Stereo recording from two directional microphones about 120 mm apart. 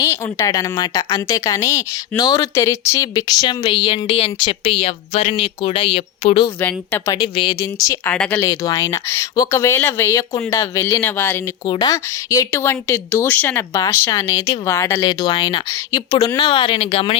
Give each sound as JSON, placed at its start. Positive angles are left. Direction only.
{"t": 0.0, "sound": "a woman's voice", "side_deg": 25}
{"t": 6.6, "sound": "speech", "side_deg": 15}
{"t": 7.1, "sound": "a woman's voice", "side_deg": 40}
{"t": 8.0, "sound": "speech", "side_deg": 10}
{"t": 8.4, "sound": "speech", "side_deg": 30}
{"t": 11.6, "sound": "a woman's voice", "side_deg": 35}
{"t": 12.0, "sound": "speech", "side_deg": 25}
{"t": 14.0, "sound": "a woman's voice", "side_deg": 25}
{"t": 16.4, "sound": "speech", "side_deg": 45}